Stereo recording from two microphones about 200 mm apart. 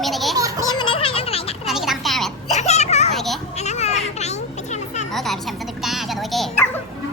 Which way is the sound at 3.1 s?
Centre (ahead or behind).